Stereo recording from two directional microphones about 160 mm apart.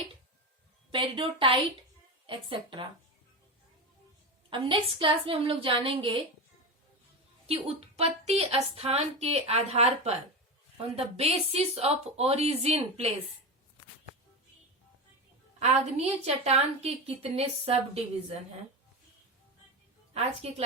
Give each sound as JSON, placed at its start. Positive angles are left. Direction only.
{"t": 0.9, "sound": "a woman's voice", "side_deg": -35}
{"t": 4.4, "sound": "a woman's voice", "side_deg": -30}
{"t": 7.4, "sound": "a woman's voice", "side_deg": -40}
{"t": 15.5, "sound": "a woman's voice", "side_deg": -45}
{"t": 20.4, "sound": "a woman's voice", "side_deg": -40}